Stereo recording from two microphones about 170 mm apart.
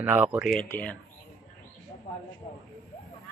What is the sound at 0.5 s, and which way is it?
Speech, 10° left (ahead or behind).